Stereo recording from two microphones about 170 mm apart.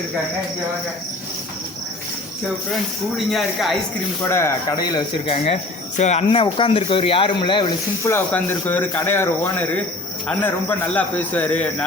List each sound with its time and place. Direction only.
3.2 s speech: centre (ahead or behind)
4.2 s speech: 15° left (ahead or behind)
8.0 s speech: 15° left (ahead or behind)